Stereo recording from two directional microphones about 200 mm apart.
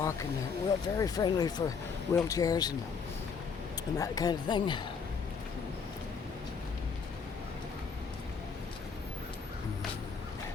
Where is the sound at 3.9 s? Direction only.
15° left (ahead or behind).